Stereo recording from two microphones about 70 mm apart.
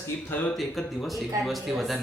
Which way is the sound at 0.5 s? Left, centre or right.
Centre.